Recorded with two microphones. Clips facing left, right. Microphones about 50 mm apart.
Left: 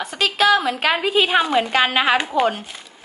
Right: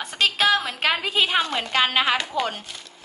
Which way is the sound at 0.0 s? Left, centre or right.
Centre.